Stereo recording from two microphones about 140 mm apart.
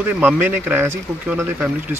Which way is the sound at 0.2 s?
10° right (ahead or behind).